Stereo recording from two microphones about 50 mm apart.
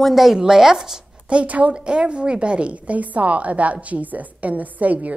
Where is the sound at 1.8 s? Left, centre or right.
Centre.